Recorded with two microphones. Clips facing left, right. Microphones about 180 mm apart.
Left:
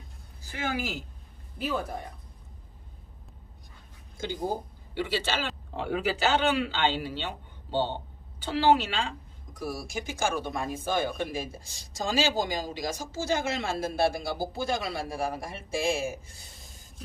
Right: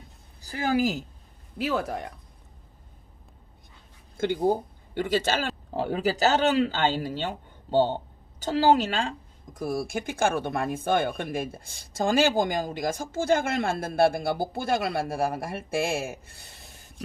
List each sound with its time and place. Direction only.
0.5 s speech: 35° right (ahead or behind)
1.6 s speech: 75° right (ahead or behind)
4.2 s speech: 60° right (ahead or behind)
9.6 s speech: 55° right (ahead or behind)